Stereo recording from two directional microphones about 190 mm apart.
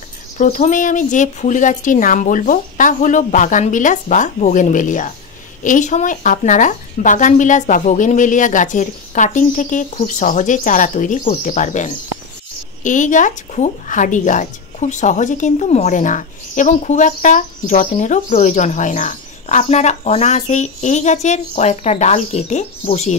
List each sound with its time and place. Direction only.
0.4 s a woman's voice: 40° left (ahead or behind)